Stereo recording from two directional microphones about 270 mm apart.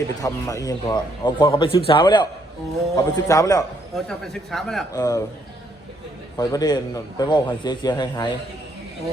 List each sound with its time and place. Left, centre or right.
0.2 s a man's voice: centre
3.9 s speech: centre
4.9 s a man's voice: centre
6.3 s a man's voice: centre